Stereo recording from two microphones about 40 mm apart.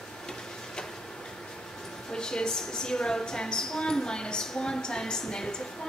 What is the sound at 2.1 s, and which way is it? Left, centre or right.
A woman's voice, centre.